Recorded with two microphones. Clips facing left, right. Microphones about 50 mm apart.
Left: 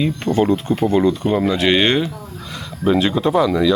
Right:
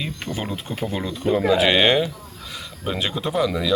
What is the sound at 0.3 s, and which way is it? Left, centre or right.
Speech, left.